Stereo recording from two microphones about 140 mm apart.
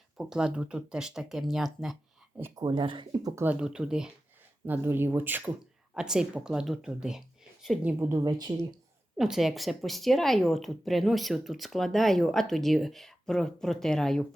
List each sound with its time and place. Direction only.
0.2 s speech: 5° right (ahead or behind)
2.6 s speech: 35° right (ahead or behind)
3.3 s speech: 10° right (ahead or behind)
7.9 s speech: 20° right (ahead or behind)
9.1 s speech: 5° right (ahead or behind)